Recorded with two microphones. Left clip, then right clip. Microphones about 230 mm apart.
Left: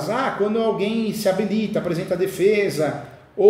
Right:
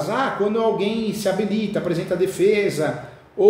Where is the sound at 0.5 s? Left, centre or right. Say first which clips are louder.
Right 1 dB; centre.